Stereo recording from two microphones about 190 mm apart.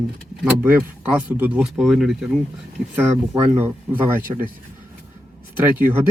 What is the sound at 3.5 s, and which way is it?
Speech, 10° right (ahead or behind).